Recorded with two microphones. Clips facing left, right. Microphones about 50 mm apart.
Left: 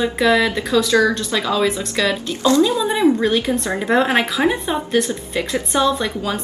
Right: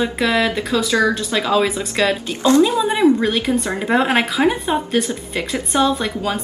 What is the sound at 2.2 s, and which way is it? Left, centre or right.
Speech, right.